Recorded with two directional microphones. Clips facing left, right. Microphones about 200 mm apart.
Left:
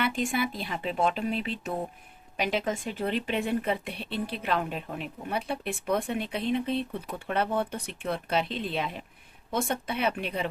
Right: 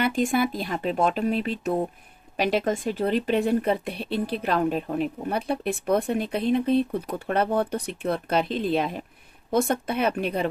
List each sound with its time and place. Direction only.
0.0 s speech: 40° right (ahead or behind)